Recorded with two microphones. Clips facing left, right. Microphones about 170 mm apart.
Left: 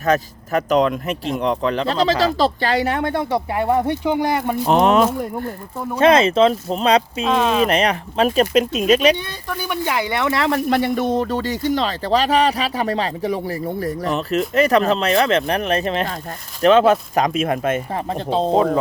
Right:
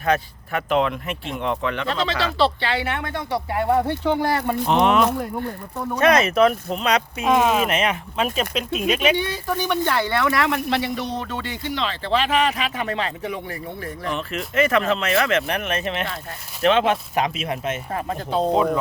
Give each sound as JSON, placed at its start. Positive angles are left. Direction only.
{"t": 0.0, "sound": "speech", "side_deg": 40}
{"t": 3.3, "sound": "speech", "side_deg": 20}
{"t": 4.6, "sound": "speech", "side_deg": 40}
{"t": 6.0, "sound": "speech", "side_deg": 30}
{"t": 7.3, "sound": "speech", "side_deg": -10}
{"t": 7.7, "sound": "speech", "side_deg": 35}
{"t": 9.6, "sound": "speech", "side_deg": 10}
{"t": 10.7, "sound": "speech", "side_deg": 50}
{"t": 17.9, "sound": "speech", "side_deg": 30}